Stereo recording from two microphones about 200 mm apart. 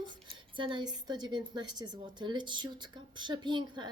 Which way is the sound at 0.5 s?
25° right (ahead or behind).